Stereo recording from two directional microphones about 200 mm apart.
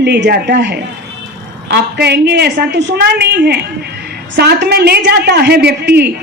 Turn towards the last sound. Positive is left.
turn(degrees=-55)  # may be behind; listen again after turning